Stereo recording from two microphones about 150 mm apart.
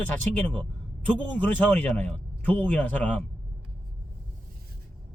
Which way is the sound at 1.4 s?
10° left (ahead or behind).